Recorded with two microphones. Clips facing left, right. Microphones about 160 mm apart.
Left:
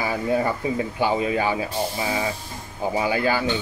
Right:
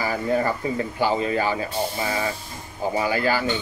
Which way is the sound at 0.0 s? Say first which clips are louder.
Even; 10° left (ahead or behind).